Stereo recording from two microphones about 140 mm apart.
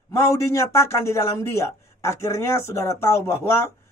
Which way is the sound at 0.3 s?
20° left (ahead or behind).